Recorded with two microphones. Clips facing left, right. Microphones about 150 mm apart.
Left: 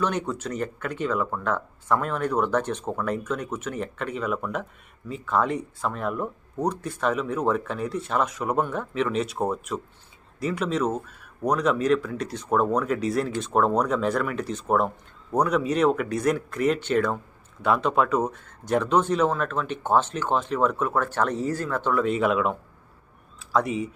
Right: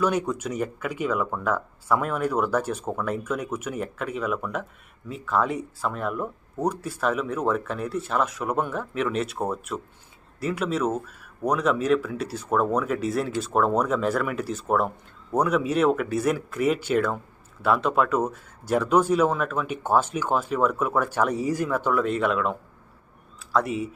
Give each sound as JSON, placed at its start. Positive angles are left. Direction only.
{"t": 0.0, "sound": "speech", "side_deg": -10}